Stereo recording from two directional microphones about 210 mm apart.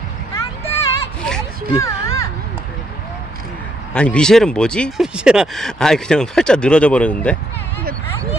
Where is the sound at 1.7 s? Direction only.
15° left (ahead or behind).